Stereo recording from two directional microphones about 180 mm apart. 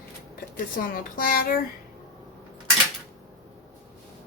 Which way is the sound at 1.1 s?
50° left (ahead or behind).